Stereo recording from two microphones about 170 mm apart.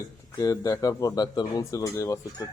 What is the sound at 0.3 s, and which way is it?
Speech, 20° left (ahead or behind).